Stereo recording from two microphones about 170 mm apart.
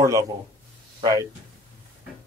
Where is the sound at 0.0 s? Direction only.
20° right (ahead or behind).